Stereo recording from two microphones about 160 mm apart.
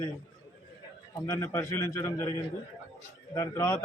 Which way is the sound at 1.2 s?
15° left (ahead or behind).